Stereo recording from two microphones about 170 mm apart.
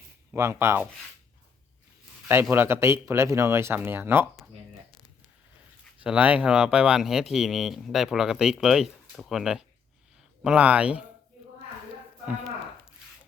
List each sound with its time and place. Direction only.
0.3 s speech: 15° right (ahead or behind)
2.2 s speech: 15° right (ahead or behind)
6.0 s speech: 10° right (ahead or behind)